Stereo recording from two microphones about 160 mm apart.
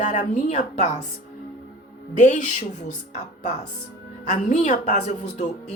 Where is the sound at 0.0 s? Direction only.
50° left (ahead or behind).